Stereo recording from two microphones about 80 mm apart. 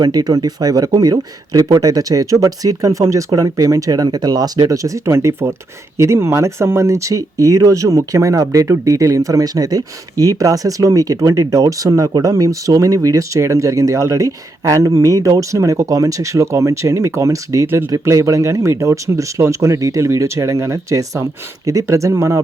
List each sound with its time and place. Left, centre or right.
0.0 s speech: right